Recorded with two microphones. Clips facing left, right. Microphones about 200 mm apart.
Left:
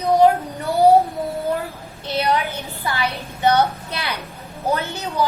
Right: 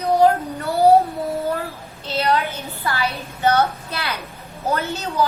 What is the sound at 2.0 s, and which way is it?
A woman's voice, 15° left (ahead or behind).